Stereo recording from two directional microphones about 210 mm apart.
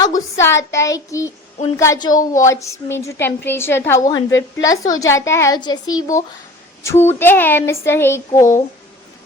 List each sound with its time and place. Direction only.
0.0 s a woman's voice: 15° left (ahead or behind)